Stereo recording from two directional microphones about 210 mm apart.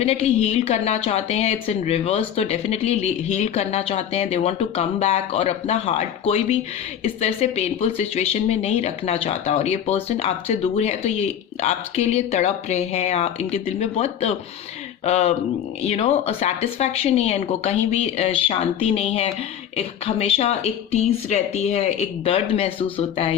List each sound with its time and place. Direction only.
0.0 s speech: 30° left (ahead or behind)